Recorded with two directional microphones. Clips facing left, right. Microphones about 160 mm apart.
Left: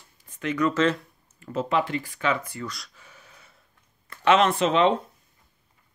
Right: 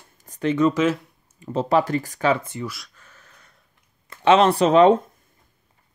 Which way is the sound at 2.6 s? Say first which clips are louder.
Right 4 dB; 5° right (ahead or behind).